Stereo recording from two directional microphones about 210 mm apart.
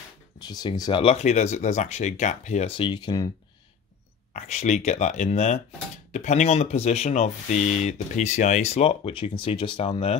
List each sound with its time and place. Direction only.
0.4 s speech: 20° left (ahead or behind)
4.3 s speech: 35° left (ahead or behind)